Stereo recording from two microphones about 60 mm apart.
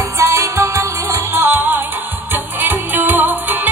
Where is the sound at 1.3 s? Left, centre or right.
Right.